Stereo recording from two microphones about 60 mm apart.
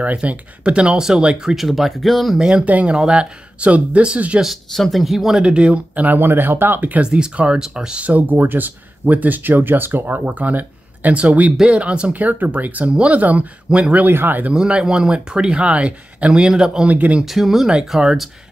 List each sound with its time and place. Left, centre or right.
0.0 s speech: right
1.5 s speech: centre
2.3 s speech: centre
4.7 s speech: centre
5.4 s speech: centre
7.0 s speech: centre
14.0 s speech: right
14.5 s speech: centre
16.9 s speech: right
17.2 s speech: centre